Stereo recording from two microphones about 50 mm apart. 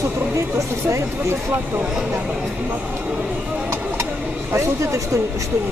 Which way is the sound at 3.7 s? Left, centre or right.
Right.